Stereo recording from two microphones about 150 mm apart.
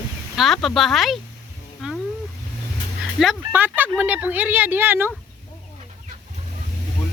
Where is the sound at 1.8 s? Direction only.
Centre (ahead or behind).